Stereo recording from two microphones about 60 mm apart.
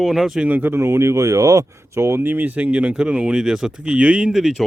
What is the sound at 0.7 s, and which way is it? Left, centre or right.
Speech, right.